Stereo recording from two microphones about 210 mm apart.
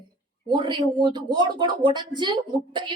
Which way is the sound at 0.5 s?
20° right (ahead or behind).